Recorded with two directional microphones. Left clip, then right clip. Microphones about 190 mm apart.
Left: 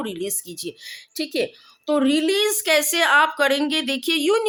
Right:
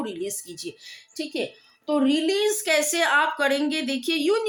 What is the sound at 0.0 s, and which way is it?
A woman's voice, 40° left (ahead or behind).